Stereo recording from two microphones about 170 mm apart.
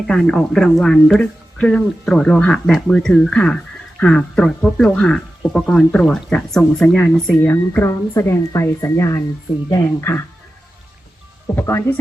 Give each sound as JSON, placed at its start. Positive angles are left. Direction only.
{"t": 0.1, "sound": "speech", "side_deg": 0}
{"t": 11.5, "sound": "speech", "side_deg": 15}